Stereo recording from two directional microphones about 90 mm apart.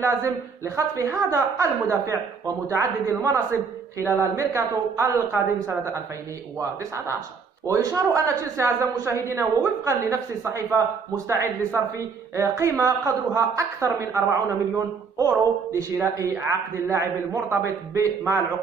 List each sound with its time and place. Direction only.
0.0 s speech: 35° right (ahead or behind)
7.6 s speech: 40° right (ahead or behind)